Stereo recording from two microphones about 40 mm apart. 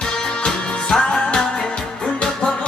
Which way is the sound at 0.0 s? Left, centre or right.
Centre.